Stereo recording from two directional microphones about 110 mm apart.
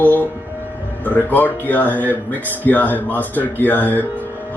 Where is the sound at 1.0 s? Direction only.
15° left (ahead or behind).